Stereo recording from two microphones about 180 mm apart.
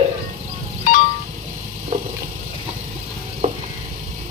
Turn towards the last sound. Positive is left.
turn(degrees=-45)  # may be behind; listen again after turning